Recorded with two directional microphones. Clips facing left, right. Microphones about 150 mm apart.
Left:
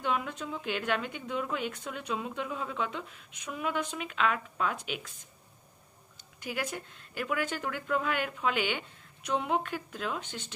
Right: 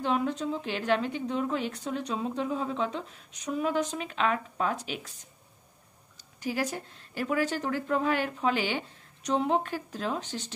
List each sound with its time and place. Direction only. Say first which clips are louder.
0.0 s a woman's voice: right 5 dB; 35° right (ahead or behind)
6.1 s a woman's voice: right 5 dB; 35° right (ahead or behind)